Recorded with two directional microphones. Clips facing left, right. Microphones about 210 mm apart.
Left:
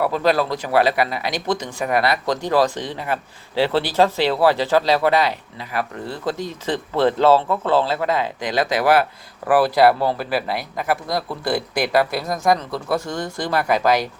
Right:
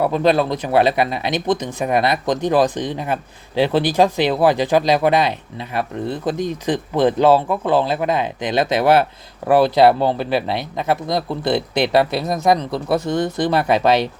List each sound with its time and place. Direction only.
0.0 s speech: 20° right (ahead or behind)